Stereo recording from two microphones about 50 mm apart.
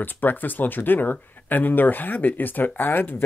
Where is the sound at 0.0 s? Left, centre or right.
Left.